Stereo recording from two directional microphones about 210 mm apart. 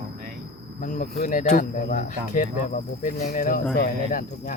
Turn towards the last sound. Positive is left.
turn(degrees=40)  # may be behind; listen again after turning